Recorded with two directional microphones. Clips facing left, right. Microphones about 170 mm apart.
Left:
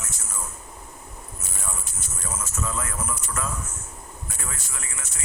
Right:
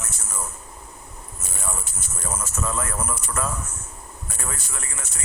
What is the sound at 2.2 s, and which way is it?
A man's voice, 55° right (ahead or behind).